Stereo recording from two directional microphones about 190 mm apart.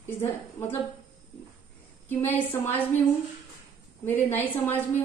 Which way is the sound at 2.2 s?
30° left (ahead or behind).